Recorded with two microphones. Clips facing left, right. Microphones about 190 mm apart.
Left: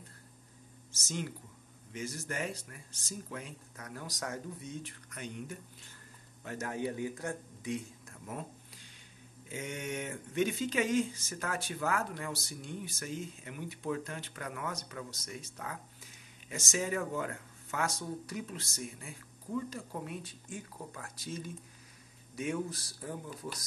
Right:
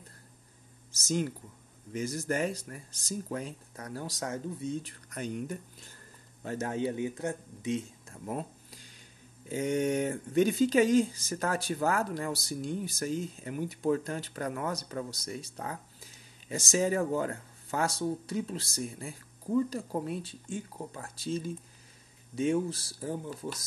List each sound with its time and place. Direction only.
0.9 s speech: 40° right (ahead or behind)
6.4 s speech: 30° right (ahead or behind)
9.5 s speech: 35° right (ahead or behind)